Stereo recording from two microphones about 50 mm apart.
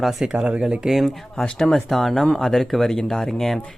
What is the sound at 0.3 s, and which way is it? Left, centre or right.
Speech, right.